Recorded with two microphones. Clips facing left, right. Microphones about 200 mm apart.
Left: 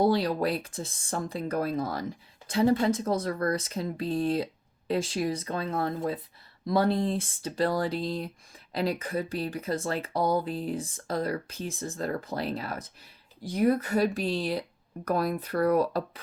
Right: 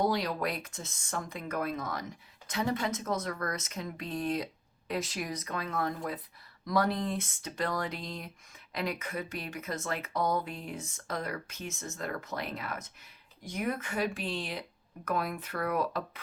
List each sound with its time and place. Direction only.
0.0 s speech: 30° left (ahead or behind)